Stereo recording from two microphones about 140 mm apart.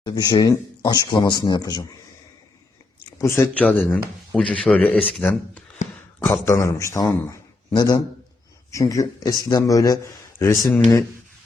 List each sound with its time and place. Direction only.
0.0 s a man's voice: 30° left (ahead or behind)
3.2 s a man's voice: 20° left (ahead or behind)